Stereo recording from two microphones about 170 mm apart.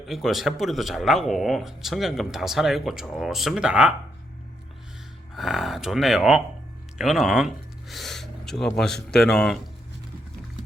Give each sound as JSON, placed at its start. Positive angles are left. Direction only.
{"t": 0.0, "sound": "speech", "side_deg": 0}
{"t": 5.3, "sound": "speech", "side_deg": 0}